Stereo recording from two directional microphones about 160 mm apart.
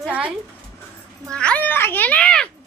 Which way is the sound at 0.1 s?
10° right (ahead or behind).